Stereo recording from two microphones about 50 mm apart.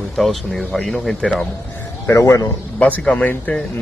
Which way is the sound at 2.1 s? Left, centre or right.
Left.